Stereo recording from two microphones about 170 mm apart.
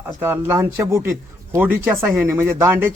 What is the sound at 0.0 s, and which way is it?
Speech, 15° right (ahead or behind).